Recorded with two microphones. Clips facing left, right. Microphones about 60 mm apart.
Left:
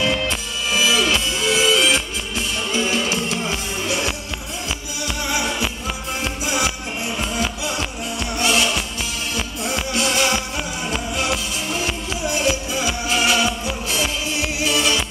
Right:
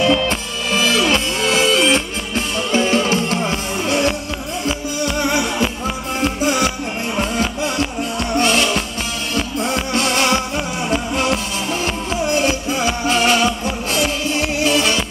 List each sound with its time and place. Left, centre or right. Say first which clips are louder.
0.0 s music: right 5 dB; right